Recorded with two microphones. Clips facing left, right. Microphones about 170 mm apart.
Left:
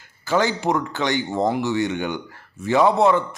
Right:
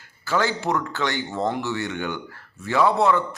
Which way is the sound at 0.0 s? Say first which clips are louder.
Left 3 dB; 20° left (ahead or behind).